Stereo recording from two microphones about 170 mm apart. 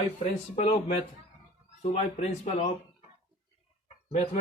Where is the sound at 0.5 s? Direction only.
40° left (ahead or behind).